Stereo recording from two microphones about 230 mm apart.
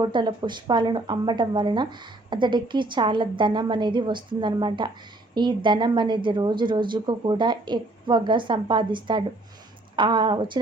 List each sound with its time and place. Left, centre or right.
0.0 s speech: centre